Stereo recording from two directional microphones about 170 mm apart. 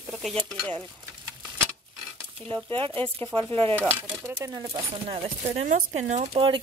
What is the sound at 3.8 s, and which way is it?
Speech, 10° right (ahead or behind).